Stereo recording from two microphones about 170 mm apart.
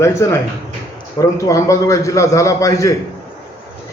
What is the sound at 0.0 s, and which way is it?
A man's voice, 15° left (ahead or behind).